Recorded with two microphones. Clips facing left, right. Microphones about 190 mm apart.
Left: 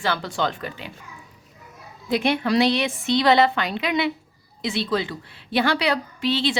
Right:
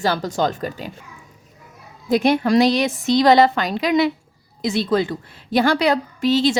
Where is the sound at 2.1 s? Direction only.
40° right (ahead or behind).